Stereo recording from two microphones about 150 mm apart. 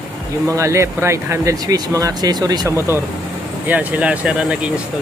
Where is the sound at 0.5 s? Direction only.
20° right (ahead or behind).